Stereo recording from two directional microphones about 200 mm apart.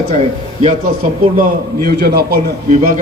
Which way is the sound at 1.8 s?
50° right (ahead or behind).